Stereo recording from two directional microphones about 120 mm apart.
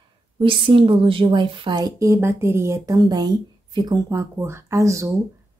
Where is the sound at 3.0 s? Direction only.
35° right (ahead or behind).